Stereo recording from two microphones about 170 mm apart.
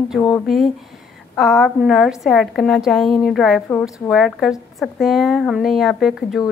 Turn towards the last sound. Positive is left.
turn(degrees=0)  # may be behind; listen again after turning